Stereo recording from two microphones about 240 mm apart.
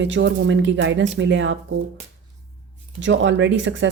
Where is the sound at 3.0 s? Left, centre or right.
Right.